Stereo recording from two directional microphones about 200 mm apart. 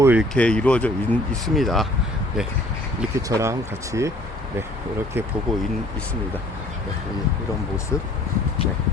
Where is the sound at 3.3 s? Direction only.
15° right (ahead or behind).